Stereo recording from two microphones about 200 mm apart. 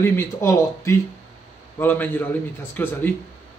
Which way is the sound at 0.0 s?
10° left (ahead or behind).